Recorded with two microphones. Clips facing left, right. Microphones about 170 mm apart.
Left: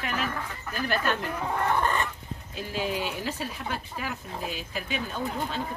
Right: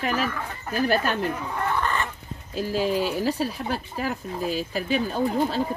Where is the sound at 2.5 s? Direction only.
40° right (ahead or behind).